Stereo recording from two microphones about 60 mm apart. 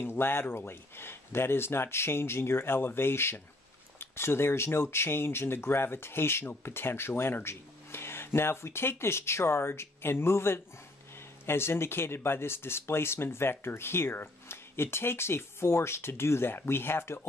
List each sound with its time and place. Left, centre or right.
0.0 s speech: left